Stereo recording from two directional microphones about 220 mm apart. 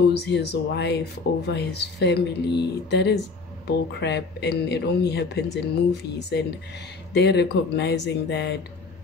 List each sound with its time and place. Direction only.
0.2 s speech: 50° left (ahead or behind)